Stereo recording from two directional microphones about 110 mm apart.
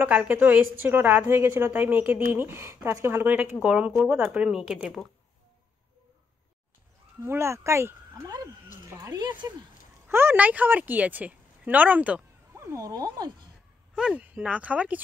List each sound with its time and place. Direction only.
0.0 s a woman's voice: 15° right (ahead or behind)
7.2 s speech: 25° right (ahead or behind)
9.1 s speech: 40° right (ahead or behind)
10.0 s a woman's voice: 20° right (ahead or behind)
12.5 s speech: 25° right (ahead or behind)
13.9 s a woman's voice: 10° right (ahead or behind)